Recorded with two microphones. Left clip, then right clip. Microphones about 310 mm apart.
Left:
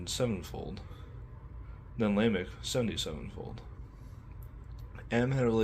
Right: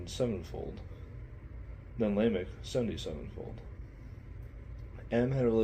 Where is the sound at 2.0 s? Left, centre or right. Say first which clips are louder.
Even; left.